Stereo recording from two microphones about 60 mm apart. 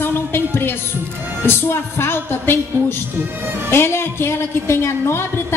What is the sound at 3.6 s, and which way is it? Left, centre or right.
A woman's voice, left.